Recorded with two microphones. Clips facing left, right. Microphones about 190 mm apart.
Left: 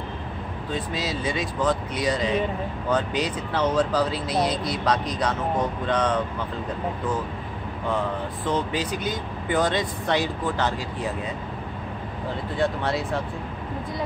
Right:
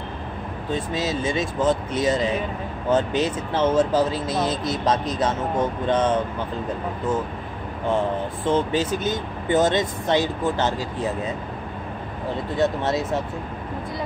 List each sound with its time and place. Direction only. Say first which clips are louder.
0.9 s speech: right 4 dB; 25° right (ahead or behind)
8.5 s speech: right 5 dB; 25° right (ahead or behind)
12.5 s speech: right 3 dB; 20° right (ahead or behind)